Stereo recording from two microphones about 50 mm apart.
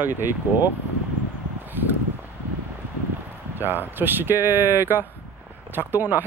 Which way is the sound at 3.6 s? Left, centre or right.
Right.